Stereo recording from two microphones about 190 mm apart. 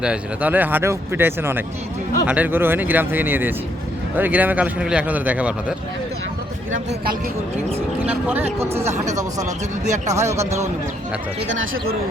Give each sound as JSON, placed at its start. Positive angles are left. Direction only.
{"t": 0.0, "sound": "speech", "side_deg": -5}
{"t": 8.0, "sound": "speech", "side_deg": -10}
{"t": 8.9, "sound": "speech", "side_deg": -40}
{"t": 10.1, "sound": "speech", "side_deg": -15}
{"t": 11.4, "sound": "speech", "side_deg": -90}